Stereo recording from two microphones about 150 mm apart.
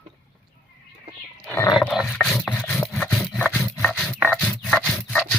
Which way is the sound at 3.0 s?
Centre (ahead or behind).